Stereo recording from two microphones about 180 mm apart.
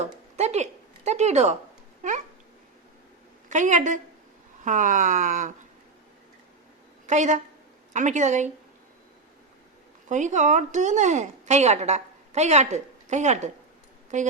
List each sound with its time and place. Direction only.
0.0 s a sound: 40° right (ahead or behind)
2.0 s dog: 45° right (ahead or behind)
3.5 s speech: 45° right (ahead or behind)
7.1 s a woman's voice: 40° right (ahead or behind)
10.1 s a woman's voice: 40° right (ahead or behind)